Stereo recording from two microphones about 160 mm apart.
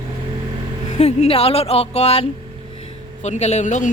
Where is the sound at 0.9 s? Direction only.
40° left (ahead or behind).